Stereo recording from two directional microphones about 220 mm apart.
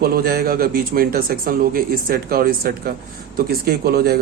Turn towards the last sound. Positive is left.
turn(degrees=-45)  # may be behind; listen again after turning